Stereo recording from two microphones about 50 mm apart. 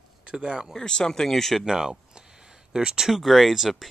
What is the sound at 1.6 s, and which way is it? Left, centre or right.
Speech, centre.